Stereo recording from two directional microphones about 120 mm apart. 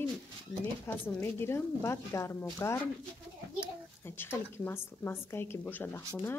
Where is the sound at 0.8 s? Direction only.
20° left (ahead or behind).